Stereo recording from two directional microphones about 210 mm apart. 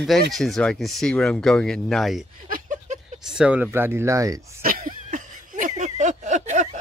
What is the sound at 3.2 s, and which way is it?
Speech, 5° right (ahead or behind).